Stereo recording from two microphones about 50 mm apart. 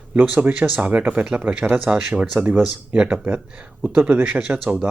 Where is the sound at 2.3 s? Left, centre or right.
Right.